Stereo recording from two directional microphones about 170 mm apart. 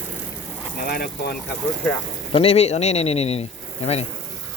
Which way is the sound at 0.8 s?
70° left (ahead or behind).